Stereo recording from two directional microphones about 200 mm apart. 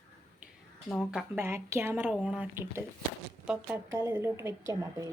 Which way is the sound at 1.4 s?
15° right (ahead or behind).